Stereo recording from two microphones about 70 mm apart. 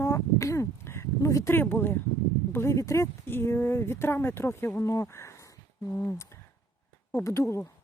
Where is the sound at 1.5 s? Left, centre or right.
Left.